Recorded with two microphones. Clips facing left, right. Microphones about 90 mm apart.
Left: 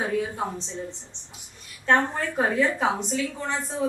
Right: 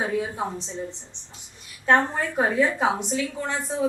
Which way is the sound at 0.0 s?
10° right (ahead or behind).